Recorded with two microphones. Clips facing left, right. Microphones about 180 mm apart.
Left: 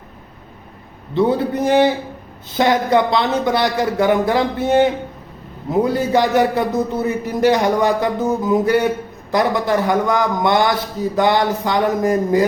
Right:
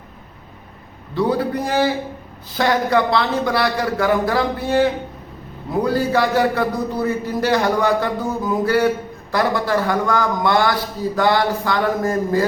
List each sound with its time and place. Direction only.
1.1 s a man's voice: 25° left (ahead or behind)